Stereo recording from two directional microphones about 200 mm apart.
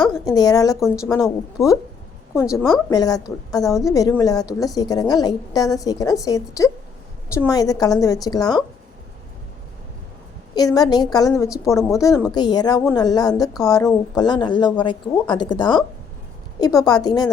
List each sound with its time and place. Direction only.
0.3 s a woman's voice: 20° left (ahead or behind)
2.6 s a woman's voice: centre (ahead or behind)
2.9 s a woman's voice: 20° left (ahead or behind)
10.5 s a woman's voice: 20° left (ahead or behind)